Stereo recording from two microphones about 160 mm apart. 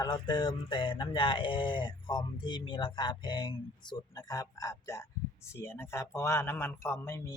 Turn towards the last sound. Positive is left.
turn(degrees=15)  # may be behind; listen again after turning